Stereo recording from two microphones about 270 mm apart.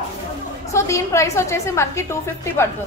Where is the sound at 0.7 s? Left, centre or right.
Centre.